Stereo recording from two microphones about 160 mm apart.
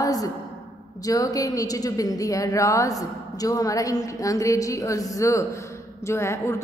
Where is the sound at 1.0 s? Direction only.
20° left (ahead or behind).